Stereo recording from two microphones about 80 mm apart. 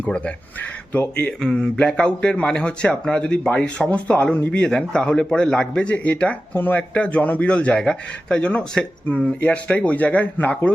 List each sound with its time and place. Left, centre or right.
0.0 s speech: centre
1.4 s speech: centre